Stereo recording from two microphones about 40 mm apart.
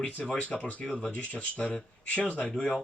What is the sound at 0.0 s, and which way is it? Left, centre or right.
Speech, left.